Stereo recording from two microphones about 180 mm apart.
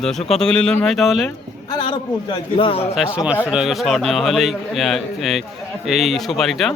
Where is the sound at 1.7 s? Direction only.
25° left (ahead or behind).